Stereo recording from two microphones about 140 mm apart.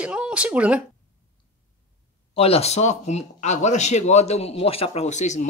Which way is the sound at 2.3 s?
45° left (ahead or behind).